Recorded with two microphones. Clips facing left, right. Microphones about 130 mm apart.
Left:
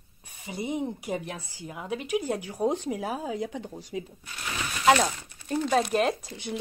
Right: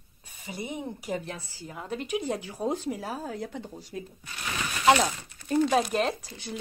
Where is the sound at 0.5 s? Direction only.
20° left (ahead or behind).